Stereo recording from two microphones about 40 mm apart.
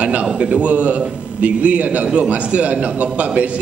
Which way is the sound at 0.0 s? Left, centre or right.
Right.